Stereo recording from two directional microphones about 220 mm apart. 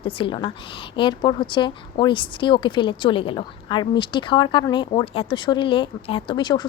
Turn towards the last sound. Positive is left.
turn(degrees=20)  # may be behind; listen again after turning